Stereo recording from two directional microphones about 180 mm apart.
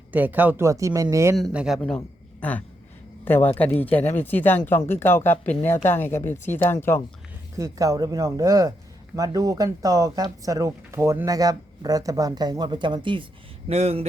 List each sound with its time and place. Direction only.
0.1 s speech: 10° right (ahead or behind)
1.4 s speech: centre (ahead or behind)
2.0 s a sound: 10° left (ahead or behind)
3.2 s speech: 10° left (ahead or behind)
7.5 s speech: 20° right (ahead or behind); by 14.0 s 35° right (ahead or behind)